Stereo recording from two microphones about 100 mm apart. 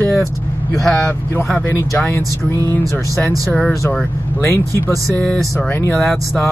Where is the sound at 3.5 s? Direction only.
5° left (ahead or behind).